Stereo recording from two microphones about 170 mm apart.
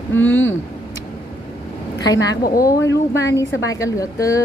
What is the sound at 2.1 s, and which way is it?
A woman's voice, 20° left (ahead or behind).